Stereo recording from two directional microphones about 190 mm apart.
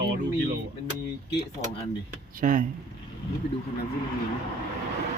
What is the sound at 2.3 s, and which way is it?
Speech, 45° right (ahead or behind).